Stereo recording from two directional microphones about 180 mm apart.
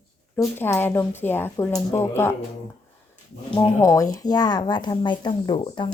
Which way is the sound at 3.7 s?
15° left (ahead or behind).